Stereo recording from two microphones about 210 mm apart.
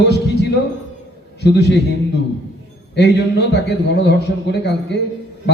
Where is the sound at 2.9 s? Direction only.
55° left (ahead or behind).